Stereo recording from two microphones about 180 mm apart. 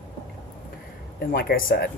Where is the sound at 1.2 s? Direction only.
60° left (ahead or behind).